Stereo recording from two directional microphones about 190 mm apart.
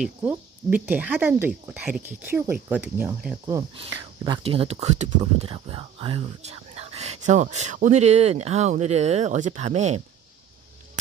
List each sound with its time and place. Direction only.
0.0 s speech: 10° right (ahead or behind)
3.9 s speech: 20° right (ahead or behind)